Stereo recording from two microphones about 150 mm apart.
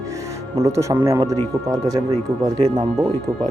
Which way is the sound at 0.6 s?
20° right (ahead or behind).